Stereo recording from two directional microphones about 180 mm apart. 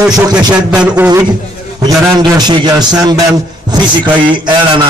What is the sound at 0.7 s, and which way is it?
Speech, 5° right (ahead or behind).